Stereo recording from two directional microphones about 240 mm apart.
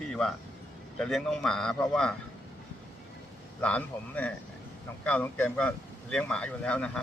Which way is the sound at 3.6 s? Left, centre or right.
Centre.